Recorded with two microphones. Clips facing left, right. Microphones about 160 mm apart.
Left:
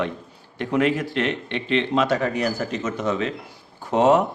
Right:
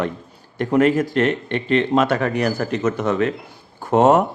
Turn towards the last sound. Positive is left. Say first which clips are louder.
# right 3 dB
turn(degrees=-50)  # may be behind; listen again after turning